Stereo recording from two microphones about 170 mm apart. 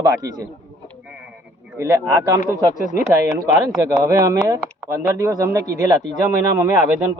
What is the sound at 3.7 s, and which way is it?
Speech, 20° right (ahead or behind).